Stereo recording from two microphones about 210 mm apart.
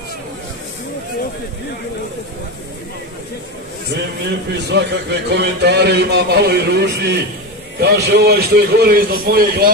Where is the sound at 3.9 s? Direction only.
55° right (ahead or behind).